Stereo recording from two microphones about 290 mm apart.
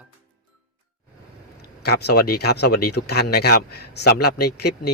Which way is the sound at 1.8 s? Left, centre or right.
Left.